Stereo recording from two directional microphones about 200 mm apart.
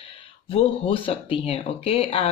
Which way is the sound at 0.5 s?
25° left (ahead or behind).